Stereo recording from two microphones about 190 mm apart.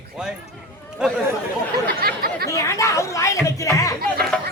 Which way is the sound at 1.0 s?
5° right (ahead or behind).